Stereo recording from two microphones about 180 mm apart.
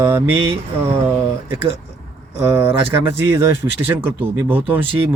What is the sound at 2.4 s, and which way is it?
Speech, 15° right (ahead or behind).